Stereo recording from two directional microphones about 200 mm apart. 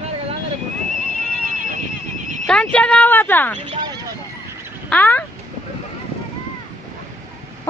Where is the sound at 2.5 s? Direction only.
5° left (ahead or behind).